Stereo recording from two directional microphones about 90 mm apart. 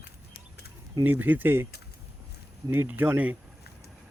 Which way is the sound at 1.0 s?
20° right (ahead or behind).